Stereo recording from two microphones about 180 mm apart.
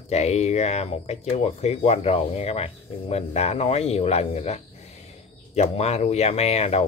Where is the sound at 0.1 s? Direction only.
40° left (ahead or behind).